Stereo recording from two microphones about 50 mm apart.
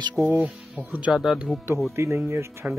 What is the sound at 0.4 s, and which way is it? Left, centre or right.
Speech, right.